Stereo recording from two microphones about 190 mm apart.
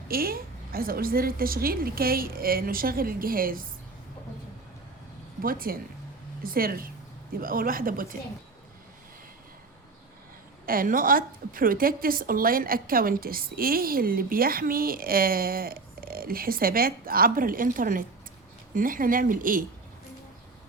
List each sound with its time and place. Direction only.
0.1 s a woman's voice: 50° right (ahead or behind)
5.4 s a woman's voice: 50° right (ahead or behind)
10.7 s a woman's voice: 50° right (ahead or behind)